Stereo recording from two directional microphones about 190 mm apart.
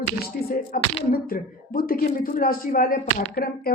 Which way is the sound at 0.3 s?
50° left (ahead or behind).